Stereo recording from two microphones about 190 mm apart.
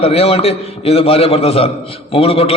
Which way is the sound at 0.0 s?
30° left (ahead or behind).